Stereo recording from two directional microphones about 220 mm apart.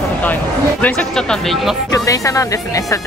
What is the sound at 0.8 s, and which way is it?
Speech, 5° left (ahead or behind).